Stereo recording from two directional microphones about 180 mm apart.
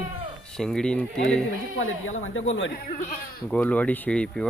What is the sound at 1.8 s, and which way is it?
Speech, 90° left.